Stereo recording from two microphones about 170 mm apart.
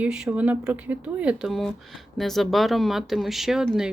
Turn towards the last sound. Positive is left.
turn(degrees=-5)  # may be behind; listen again after turning